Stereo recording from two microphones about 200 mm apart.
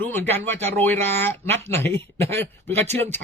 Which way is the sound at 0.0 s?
10° left (ahead or behind).